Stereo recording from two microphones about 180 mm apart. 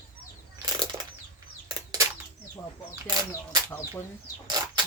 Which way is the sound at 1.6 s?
20° right (ahead or behind).